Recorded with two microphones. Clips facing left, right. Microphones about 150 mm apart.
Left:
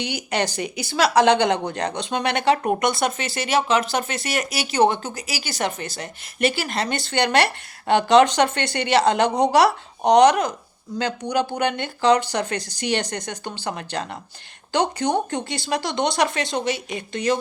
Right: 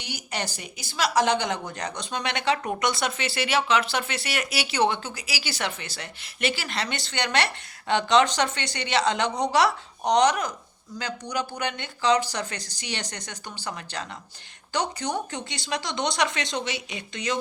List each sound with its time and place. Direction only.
0.0 s speech: 65° left (ahead or behind)